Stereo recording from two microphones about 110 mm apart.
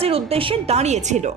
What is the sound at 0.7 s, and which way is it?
Speech, 90° right.